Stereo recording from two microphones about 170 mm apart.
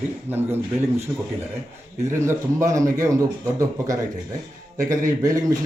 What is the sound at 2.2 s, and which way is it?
A man's voice, 15° right (ahead or behind).